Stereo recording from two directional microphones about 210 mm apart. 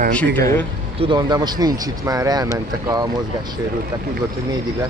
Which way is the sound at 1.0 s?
20° right (ahead or behind).